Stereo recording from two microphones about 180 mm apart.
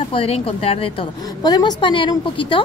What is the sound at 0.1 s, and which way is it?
A woman's voice, 30° left (ahead or behind).